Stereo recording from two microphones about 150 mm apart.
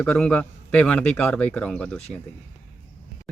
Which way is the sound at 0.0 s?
5° left (ahead or behind).